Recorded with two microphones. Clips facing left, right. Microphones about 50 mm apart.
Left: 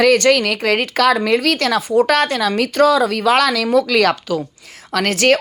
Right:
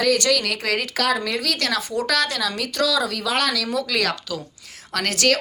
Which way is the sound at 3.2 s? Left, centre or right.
Left.